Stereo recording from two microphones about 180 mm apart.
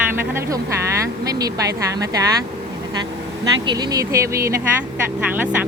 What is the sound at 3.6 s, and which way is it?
A woman's voice, 25° right (ahead or behind).